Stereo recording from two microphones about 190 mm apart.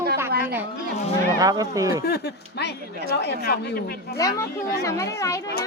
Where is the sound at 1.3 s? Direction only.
20° right (ahead or behind).